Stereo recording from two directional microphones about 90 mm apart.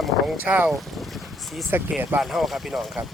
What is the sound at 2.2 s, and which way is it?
Speech, centre (ahead or behind).